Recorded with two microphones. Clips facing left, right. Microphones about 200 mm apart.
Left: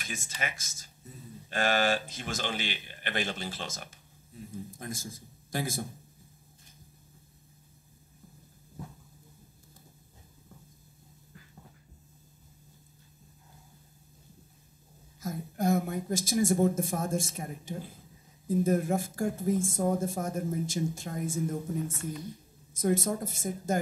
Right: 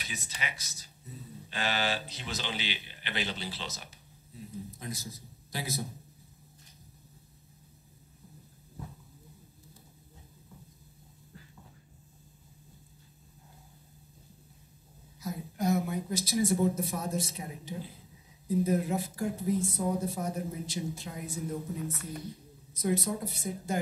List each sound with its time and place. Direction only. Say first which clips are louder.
0.0 s a man's voice: left 3 dB; 45° left (ahead or behind)
15.1 s speech: left 2 dB; 50° left (ahead or behind)